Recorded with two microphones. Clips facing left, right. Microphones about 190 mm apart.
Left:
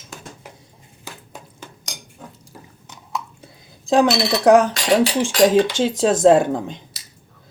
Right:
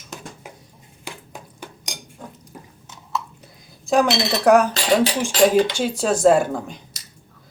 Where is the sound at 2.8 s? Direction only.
15° left (ahead or behind).